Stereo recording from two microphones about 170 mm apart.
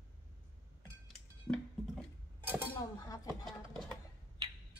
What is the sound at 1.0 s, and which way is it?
Cutlery, 5° left (ahead or behind).